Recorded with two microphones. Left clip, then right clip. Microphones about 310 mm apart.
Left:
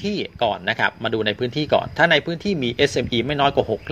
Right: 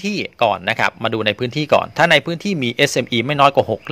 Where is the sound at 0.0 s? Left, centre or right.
Right.